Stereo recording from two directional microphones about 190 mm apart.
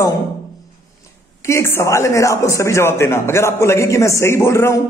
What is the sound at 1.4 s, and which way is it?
A man's voice, 15° left (ahead or behind).